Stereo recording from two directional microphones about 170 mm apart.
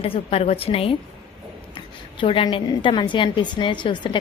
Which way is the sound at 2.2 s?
30° left (ahead or behind).